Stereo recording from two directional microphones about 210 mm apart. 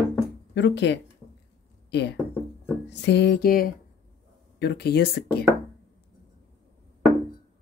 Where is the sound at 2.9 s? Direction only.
55° left (ahead or behind).